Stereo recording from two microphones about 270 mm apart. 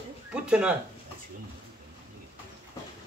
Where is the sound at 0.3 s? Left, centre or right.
Centre.